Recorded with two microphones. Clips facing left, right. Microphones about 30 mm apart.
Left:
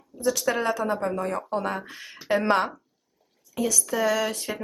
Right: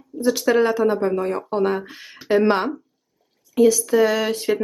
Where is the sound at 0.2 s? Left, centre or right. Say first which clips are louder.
Right 7 dB; right.